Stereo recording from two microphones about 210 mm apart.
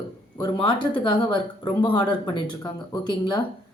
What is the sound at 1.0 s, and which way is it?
A woman's voice, 25° left (ahead or behind).